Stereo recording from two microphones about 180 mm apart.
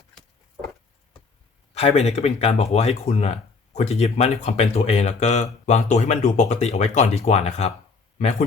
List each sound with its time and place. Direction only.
1.7 s speech: 35° left (ahead or behind)